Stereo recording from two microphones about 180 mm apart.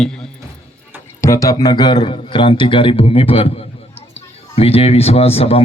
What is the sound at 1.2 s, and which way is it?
A man's voice, 15° left (ahead or behind).